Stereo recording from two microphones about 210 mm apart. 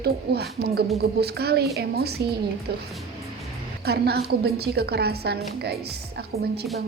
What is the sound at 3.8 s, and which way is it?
Speech, 50° right (ahead or behind).